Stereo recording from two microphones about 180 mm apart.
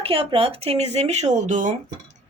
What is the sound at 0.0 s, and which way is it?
Speech, 30° right (ahead or behind).